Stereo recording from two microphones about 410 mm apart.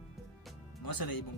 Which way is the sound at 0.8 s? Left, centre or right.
Left.